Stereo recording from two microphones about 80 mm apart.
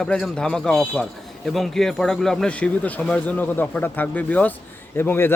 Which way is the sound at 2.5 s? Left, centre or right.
Centre.